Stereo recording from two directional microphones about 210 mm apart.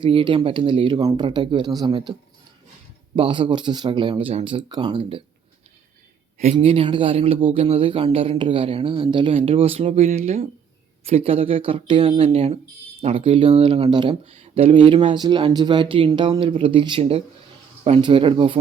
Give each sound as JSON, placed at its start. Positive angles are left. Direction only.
{"t": 0.0, "sound": "speech", "side_deg": -25}
{"t": 3.2, "sound": "speech", "side_deg": -25}
{"t": 6.4, "sound": "speech", "side_deg": -30}